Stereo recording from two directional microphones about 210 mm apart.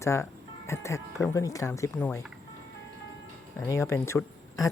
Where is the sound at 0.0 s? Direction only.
15° left (ahead or behind).